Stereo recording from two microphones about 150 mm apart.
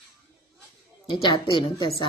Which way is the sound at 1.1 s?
30° left (ahead or behind).